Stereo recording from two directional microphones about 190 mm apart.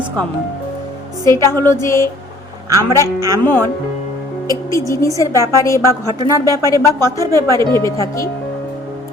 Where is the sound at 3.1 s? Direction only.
15° right (ahead or behind).